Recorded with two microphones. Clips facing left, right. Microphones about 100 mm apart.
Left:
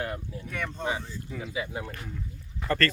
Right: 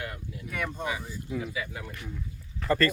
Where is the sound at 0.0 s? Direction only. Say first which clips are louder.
Left 5 dB; 35° left (ahead or behind).